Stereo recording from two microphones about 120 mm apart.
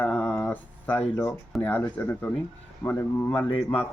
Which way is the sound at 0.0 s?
10° left (ahead or behind).